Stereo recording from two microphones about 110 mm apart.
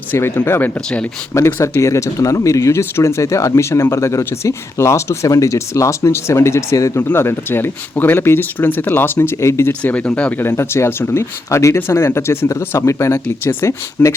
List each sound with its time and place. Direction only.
0.1 s speech: 20° left (ahead or behind)
9.8 s speech: 15° left (ahead or behind)
10.4 s speech: 25° left (ahead or behind)